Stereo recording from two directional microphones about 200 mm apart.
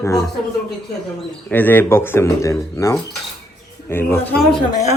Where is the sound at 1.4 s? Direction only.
10° left (ahead or behind).